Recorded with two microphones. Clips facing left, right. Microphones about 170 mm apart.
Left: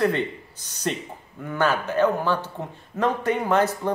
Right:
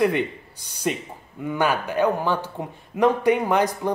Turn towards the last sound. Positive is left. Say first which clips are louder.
# even
turn(degrees=-15)  # may be behind; listen again after turning